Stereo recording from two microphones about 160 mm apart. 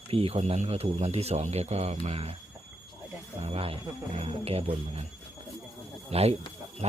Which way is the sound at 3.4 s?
40° right (ahead or behind).